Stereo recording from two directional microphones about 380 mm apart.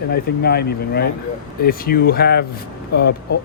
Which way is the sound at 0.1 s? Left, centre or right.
Left.